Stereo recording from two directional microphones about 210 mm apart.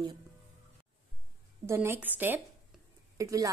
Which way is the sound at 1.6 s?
10° right (ahead or behind).